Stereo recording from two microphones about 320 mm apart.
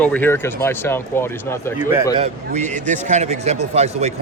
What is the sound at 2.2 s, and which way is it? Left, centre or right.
Speech, right.